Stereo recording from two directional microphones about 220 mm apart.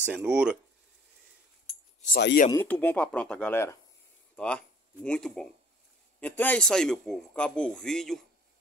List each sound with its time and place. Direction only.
0.0 s a man's voice: 5° right (ahead or behind)
2.1 s speech: 50° left (ahead or behind)
2.5 s a man's voice: 5° left (ahead or behind)